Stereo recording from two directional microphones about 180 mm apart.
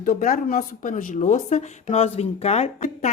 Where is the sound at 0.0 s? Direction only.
50° left (ahead or behind).